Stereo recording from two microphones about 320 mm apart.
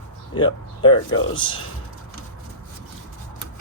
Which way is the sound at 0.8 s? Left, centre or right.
Centre.